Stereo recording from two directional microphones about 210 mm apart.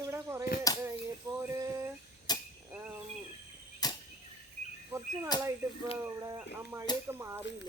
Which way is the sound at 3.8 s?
20° left (ahead or behind).